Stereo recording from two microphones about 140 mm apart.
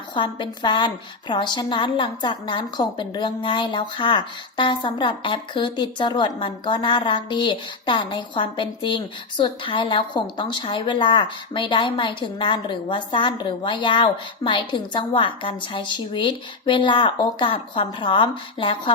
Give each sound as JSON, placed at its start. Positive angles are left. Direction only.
{"t": 0.1, "sound": "a woman's voice", "side_deg": 35}